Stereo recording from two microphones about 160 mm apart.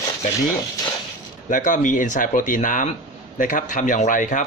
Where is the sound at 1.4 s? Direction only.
55° left (ahead or behind).